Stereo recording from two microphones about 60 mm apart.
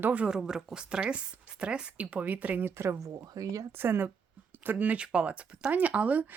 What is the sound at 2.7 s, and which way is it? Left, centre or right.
Speech, right.